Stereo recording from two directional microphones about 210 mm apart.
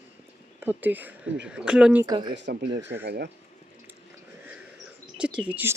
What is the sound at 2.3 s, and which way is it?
Speech, 55° right (ahead or behind).